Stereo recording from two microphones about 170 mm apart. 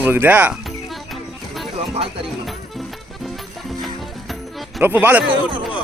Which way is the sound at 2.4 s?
Centre (ahead or behind).